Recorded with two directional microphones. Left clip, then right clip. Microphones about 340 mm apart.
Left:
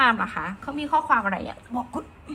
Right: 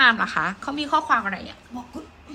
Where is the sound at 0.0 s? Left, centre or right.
Centre.